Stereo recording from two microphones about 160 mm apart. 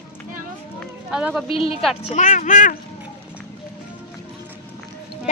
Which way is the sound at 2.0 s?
50° left (ahead or behind).